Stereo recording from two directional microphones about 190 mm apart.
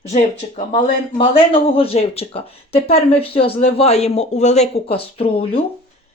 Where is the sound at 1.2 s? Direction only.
30° left (ahead or behind).